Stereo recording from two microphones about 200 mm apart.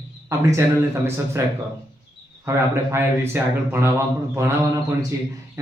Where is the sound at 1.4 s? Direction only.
15° right (ahead or behind).